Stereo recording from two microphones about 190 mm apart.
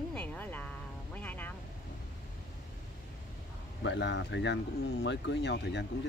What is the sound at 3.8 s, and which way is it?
Speech, 70° left (ahead or behind).